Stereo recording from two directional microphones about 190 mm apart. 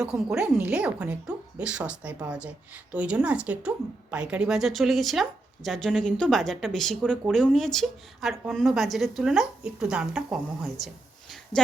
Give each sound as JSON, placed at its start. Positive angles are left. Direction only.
{"t": 0.0, "sound": "a woman's voice", "side_deg": -5}
{"t": 11.5, "sound": "speech", "side_deg": 25}